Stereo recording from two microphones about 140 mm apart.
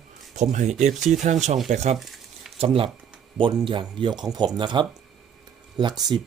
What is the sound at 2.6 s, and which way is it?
Speech, 40° right (ahead or behind).